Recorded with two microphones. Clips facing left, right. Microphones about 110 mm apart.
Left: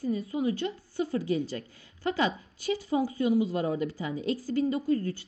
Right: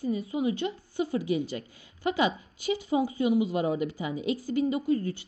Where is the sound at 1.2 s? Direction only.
5° right (ahead or behind).